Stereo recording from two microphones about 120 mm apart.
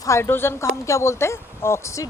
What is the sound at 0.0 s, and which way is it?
A woman's voice, 25° left (ahead or behind).